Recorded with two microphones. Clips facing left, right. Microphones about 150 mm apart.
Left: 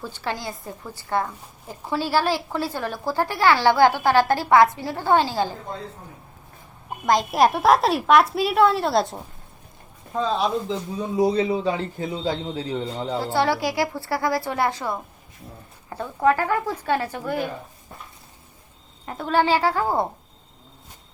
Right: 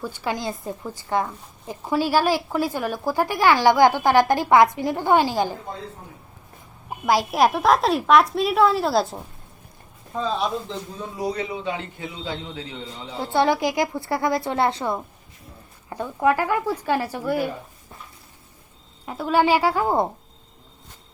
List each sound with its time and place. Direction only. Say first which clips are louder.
0.0 s a woman's voice: right 3 dB; 15° right (ahead or behind)
7.0 s a woman's voice: even; 5° right (ahead or behind)
10.9 s a man's voice: left 10 dB; 15° left (ahead or behind)
11.3 s a man's voice: left 5 dB; 30° left (ahead or behind)
12.8 s speech: left 8 dB; 55° left (ahead or behind)
13.3 s a woman's voice: right 4 dB; 20° right (ahead or behind)
15.9 s a woman's voice: even; 15° right (ahead or behind)
19.0 s a woman's voice: right 1 dB; 5° right (ahead or behind)